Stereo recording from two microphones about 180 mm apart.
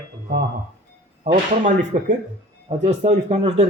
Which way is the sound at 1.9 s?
45° right (ahead or behind).